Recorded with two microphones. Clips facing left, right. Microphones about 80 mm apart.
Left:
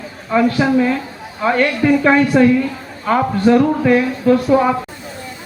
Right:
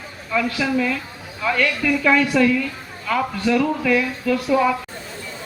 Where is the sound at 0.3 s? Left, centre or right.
Left.